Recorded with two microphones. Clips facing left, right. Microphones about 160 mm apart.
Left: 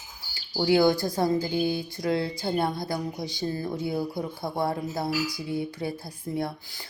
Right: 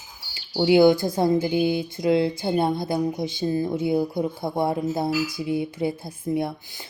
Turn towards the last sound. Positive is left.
turn(degrees=-20)  # may be behind; listen again after turning